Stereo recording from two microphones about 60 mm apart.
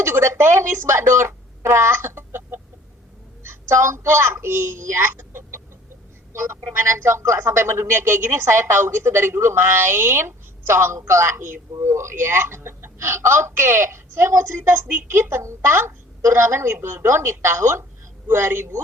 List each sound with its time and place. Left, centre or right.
0.0 s a woman's voice: right
6.7 s a woman's voice: right